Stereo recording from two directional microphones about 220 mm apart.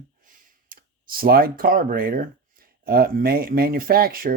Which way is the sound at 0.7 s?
40° right (ahead or behind).